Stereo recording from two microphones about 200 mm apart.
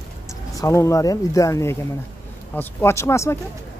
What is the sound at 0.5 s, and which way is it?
Speech, 15° left (ahead or behind).